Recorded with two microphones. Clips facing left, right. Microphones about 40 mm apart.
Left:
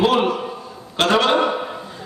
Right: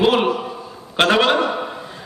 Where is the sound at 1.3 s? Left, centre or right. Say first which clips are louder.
Left 1 dB; centre.